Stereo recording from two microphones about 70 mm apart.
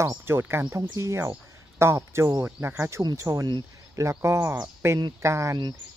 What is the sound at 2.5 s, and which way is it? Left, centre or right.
Speech, right.